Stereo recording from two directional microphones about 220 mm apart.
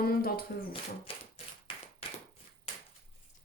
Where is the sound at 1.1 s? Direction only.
25° left (ahead or behind).